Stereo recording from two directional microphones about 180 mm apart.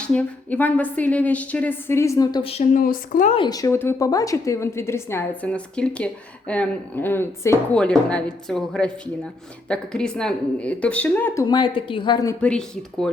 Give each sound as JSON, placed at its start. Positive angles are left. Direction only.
{"t": 0.0, "sound": "a woman's voice", "side_deg": 5}
{"t": 2.8, "sound": "a woman's voice", "side_deg": 50}
{"t": 3.3, "sound": "a woman's voice", "side_deg": 25}
{"t": 11.4, "sound": "a woman's voice", "side_deg": 25}
{"t": 12.4, "sound": "speech", "side_deg": 5}